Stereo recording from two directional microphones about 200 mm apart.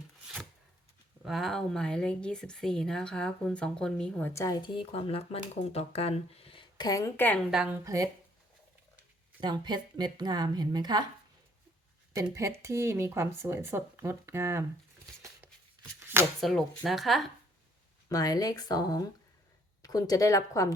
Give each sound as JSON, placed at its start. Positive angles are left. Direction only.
{"t": 1.2, "sound": "speech", "side_deg": 0}
{"t": 7.5, "sound": "speech", "side_deg": -5}
{"t": 7.9, "sound": "speech", "side_deg": -15}
{"t": 9.4, "sound": "a woman's voice", "side_deg": -20}
{"t": 12.1, "sound": "speech", "side_deg": -15}
{"t": 16.0, "sound": "shuffling cards", "side_deg": -10}
{"t": 16.4, "sound": "speech", "side_deg": 0}
{"t": 18.1, "sound": "speech", "side_deg": 20}